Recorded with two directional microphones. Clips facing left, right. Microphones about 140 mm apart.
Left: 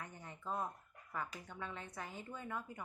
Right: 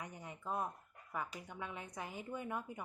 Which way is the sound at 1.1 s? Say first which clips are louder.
Right 1 dB; 15° right (ahead or behind).